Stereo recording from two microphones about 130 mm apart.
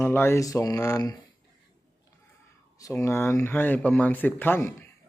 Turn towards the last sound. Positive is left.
turn(degrees=15)  # may be behind; listen again after turning